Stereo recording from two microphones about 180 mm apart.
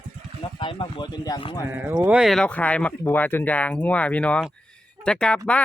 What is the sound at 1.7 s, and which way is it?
Speech, 10° right (ahead or behind).